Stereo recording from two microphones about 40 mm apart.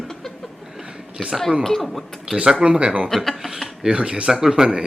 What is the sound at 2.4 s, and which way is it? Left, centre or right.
Speech, centre.